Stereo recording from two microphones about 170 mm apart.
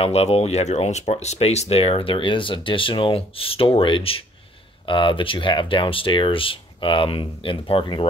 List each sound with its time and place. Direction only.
0.0 s speech: 35° left (ahead or behind)